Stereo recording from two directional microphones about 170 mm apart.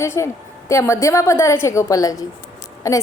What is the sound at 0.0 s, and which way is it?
A woman's voice, 15° left (ahead or behind).